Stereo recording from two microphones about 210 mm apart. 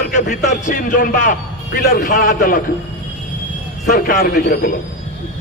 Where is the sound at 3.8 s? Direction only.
45° left (ahead or behind).